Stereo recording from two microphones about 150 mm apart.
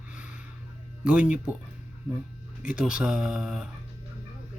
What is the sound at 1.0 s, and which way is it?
Speech, 10° right (ahead or behind).